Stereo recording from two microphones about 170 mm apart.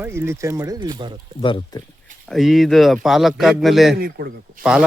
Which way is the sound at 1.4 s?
30° left (ahead or behind).